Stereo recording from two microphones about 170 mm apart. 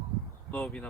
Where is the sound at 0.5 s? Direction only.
5° left (ahead or behind).